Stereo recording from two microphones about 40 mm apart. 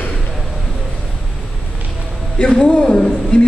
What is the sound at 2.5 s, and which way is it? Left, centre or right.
Speech, centre.